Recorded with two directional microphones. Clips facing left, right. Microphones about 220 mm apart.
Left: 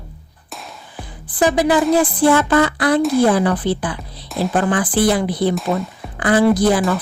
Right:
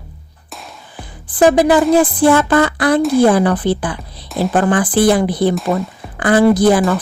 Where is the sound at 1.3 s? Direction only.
50° right (ahead or behind).